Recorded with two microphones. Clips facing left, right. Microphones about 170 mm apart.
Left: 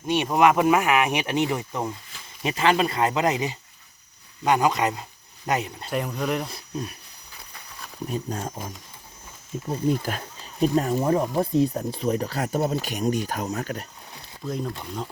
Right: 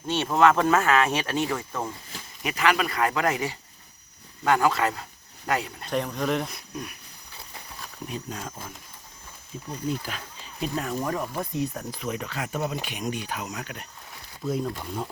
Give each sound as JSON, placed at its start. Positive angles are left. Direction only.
{"t": 0.1, "sound": "speech", "side_deg": 15}
{"t": 5.9, "sound": "speech", "side_deg": 5}
{"t": 6.5, "sound": "speech", "side_deg": 30}
{"t": 8.0, "sound": "speech", "side_deg": 40}
{"t": 9.8, "sound": "speech", "side_deg": 50}
{"t": 10.9, "sound": "speech", "side_deg": 25}
{"t": 14.4, "sound": "speech", "side_deg": -5}